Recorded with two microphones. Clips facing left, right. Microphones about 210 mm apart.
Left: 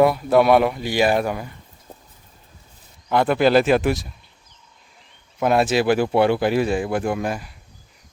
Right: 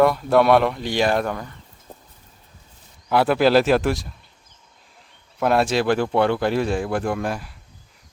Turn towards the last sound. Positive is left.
turn(degrees=0)  # may be behind; listen again after turning